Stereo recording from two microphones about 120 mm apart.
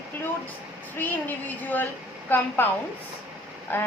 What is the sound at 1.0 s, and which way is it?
A woman's voice, 15° left (ahead or behind).